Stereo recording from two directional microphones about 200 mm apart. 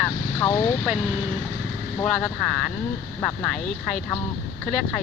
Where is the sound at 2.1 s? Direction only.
5° left (ahead or behind).